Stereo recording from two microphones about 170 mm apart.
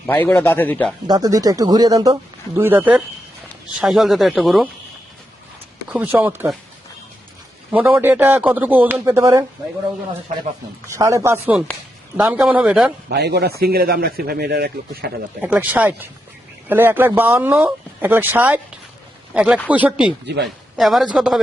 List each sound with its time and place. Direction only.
0.0 s speech: 10° left (ahead or behind)
1.0 s speech: 20° right (ahead or behind); by 4.7 s 5° right (ahead or behind)
5.9 s speech: 10° right (ahead or behind)
7.7 s speech: 10° right (ahead or behind)
10.8 s speech: 15° right (ahead or behind)
12.1 s speech: 5° right (ahead or behind)
13.1 s speech: 75° right (ahead or behind)
15.4 s a man's voice: 10° right (ahead or behind)
20.2 s speech: 90° right
20.7 s speech: centre (ahead or behind)